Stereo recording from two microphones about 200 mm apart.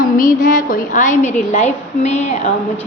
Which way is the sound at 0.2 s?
40° left (ahead or behind).